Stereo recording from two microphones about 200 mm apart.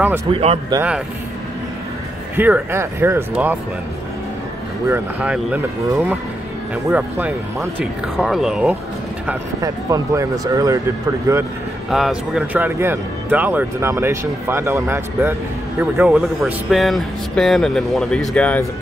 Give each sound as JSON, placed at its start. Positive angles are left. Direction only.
{"t": 0.3, "sound": "speech", "side_deg": -30}
{"t": 0.7, "sound": "speech", "side_deg": -5}
{"t": 2.3, "sound": "speech", "side_deg": -10}
{"t": 4.8, "sound": "speech", "side_deg": -10}
{"t": 11.9, "sound": "speech", "side_deg": -5}